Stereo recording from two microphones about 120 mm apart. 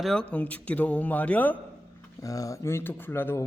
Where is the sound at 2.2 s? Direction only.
30° left (ahead or behind).